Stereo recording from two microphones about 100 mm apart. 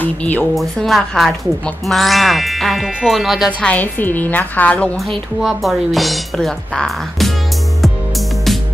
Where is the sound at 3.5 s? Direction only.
15° left (ahead or behind).